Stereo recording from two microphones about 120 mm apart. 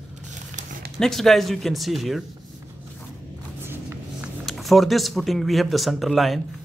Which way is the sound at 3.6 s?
20° right (ahead or behind).